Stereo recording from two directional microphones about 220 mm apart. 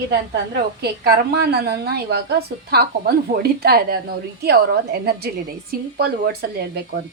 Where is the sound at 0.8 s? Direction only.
45° right (ahead or behind).